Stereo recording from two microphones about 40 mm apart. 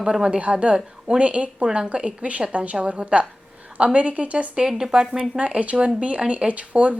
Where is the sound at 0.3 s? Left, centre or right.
Right.